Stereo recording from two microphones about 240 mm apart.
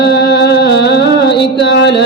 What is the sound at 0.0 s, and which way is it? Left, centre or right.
Music, left.